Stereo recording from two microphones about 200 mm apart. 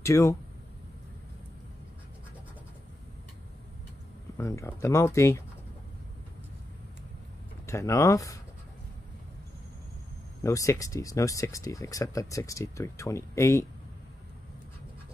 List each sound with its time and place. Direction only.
0.0 s speech: 15° left (ahead or behind)
4.4 s speech: 15° left (ahead or behind)
7.6 s speech: 15° left (ahead or behind)
10.4 s speech: 15° left (ahead or behind)